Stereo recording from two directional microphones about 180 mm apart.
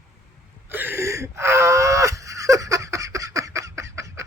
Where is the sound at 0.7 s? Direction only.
10° right (ahead or behind).